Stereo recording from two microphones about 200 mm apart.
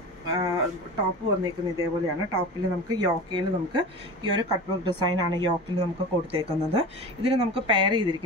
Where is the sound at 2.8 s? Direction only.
20° right (ahead or behind).